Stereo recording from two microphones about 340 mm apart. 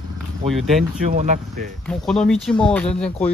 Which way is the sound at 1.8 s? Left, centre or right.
Centre.